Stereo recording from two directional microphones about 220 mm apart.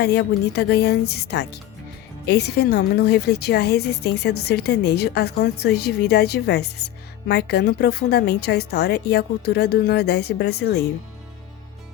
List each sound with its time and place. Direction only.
0.0 s a woman's voice: 50° left (ahead or behind)